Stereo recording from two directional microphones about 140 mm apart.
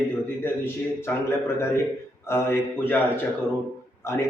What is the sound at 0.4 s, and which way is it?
A man's voice, 15° left (ahead or behind).